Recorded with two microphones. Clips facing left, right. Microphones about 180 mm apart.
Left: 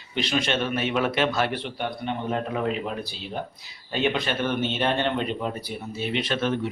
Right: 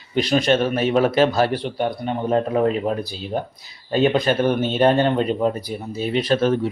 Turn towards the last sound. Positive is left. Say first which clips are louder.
# right 7 dB
turn(degrees=-40)  # may be behind; listen again after turning